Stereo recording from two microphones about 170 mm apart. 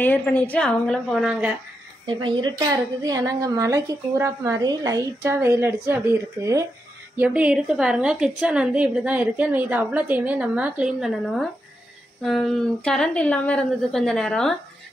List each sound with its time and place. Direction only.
0.0 s a woman's voice: 10° left (ahead or behind); by 1.6 s 5° right (ahead or behind)
2.0 s a woman's voice: 25° right (ahead or behind); by 14.5 s 5° left (ahead or behind)